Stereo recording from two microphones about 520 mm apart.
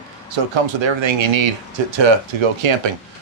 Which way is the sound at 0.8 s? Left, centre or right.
Right.